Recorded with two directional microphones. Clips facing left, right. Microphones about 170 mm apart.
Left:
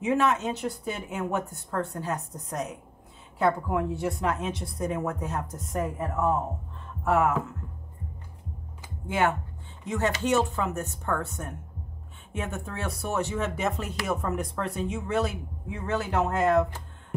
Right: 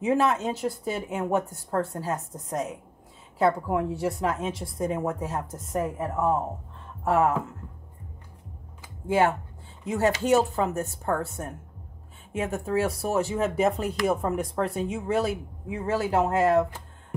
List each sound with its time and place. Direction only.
0.0 s speech: 35° right (ahead or behind)
1.7 s speech: 35° right (ahead or behind)
9.0 s speech: 30° right (ahead or behind)